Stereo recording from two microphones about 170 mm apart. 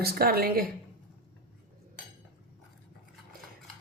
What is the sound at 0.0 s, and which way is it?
Speech, 65° right (ahead or behind).